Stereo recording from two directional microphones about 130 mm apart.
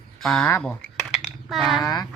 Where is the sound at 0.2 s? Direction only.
5° left (ahead or behind).